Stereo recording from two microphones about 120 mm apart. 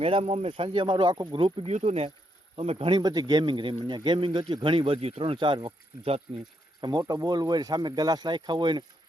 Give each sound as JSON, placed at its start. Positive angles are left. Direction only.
{"t": 0.0, "sound": "a man's voice", "side_deg": -55}
{"t": 3.0, "sound": "a man's voice", "side_deg": -35}
{"t": 6.8, "sound": "speech", "side_deg": -35}